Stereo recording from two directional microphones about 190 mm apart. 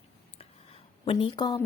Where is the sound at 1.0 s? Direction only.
30° left (ahead or behind).